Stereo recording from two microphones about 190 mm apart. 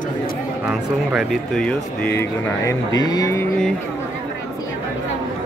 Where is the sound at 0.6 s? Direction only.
5° right (ahead or behind); by 3.4 s 20° left (ahead or behind).